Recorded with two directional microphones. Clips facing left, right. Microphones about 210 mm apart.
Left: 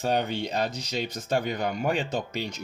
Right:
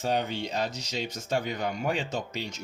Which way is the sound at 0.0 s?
55° left (ahead or behind).